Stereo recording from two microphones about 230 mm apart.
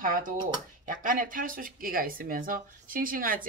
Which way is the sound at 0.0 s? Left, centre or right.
Right.